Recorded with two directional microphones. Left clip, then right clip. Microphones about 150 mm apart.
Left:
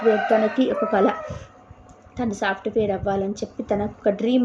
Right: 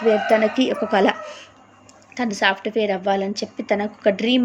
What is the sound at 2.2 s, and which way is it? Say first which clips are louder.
Speech: right 5 dB; 15° right (ahead or behind).